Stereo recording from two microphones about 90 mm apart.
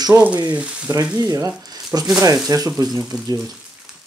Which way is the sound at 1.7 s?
45° right (ahead or behind).